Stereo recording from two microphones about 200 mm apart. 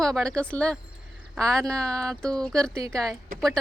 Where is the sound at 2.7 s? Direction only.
15° right (ahead or behind).